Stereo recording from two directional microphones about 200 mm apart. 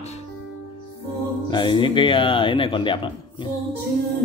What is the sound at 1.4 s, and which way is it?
Speech, 20° left (ahead or behind).